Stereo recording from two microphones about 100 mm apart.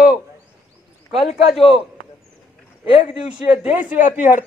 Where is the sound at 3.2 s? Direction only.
10° right (ahead or behind).